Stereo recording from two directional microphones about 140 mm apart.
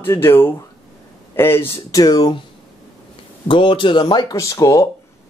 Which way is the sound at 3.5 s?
35° left (ahead or behind).